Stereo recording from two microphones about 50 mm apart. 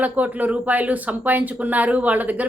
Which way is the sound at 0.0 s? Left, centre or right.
Right.